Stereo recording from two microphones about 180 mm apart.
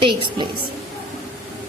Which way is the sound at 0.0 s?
30° right (ahead or behind).